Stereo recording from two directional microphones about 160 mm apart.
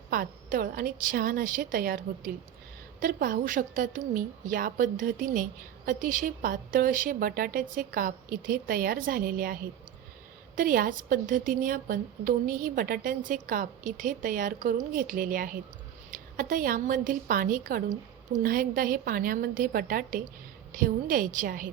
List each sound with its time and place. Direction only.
0.1 s a woman's voice: 60° right (ahead or behind)